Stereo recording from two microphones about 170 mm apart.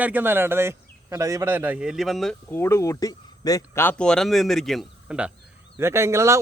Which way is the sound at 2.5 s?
15° left (ahead or behind).